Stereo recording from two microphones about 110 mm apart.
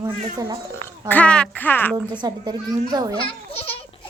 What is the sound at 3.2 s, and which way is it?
Speech, 60° left (ahead or behind).